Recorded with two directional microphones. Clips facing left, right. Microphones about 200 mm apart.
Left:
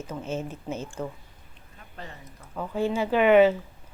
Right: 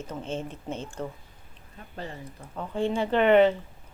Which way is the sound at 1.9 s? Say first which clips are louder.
Right 5 dB; 30° right (ahead or behind).